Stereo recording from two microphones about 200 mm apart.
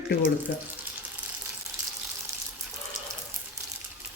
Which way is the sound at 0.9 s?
10° right (ahead or behind).